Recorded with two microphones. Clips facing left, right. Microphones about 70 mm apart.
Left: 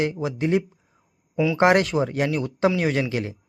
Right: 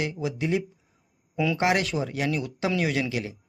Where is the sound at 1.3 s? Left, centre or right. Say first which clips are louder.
Left 4 dB; centre.